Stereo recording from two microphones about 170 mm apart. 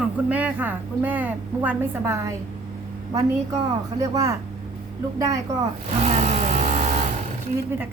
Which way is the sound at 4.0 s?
20° right (ahead or behind).